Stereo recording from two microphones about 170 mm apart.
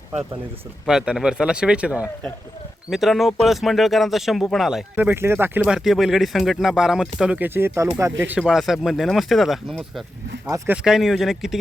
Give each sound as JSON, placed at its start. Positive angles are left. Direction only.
{"t": 0.9, "sound": "speech", "side_deg": -5}
{"t": 8.4, "sound": "speech", "side_deg": 0}
{"t": 10.5, "sound": "speech", "side_deg": -20}
{"t": 10.8, "sound": "speech", "side_deg": -5}